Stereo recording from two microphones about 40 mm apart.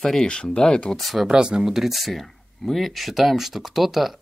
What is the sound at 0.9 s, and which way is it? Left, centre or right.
Speech, centre.